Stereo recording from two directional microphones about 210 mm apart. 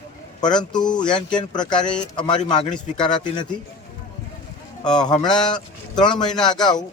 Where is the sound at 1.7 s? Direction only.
5° left (ahead or behind).